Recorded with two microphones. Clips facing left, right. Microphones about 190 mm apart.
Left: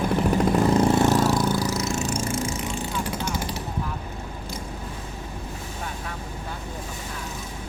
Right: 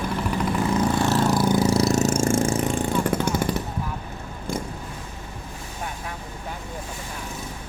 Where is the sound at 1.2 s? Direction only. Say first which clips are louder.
Right 1 dB; centre (ahead or behind).